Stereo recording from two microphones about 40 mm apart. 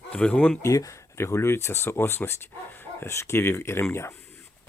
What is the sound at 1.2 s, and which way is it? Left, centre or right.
Speech, left.